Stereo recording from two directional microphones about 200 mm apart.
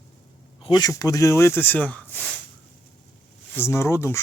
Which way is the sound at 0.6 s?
20° left (ahead or behind).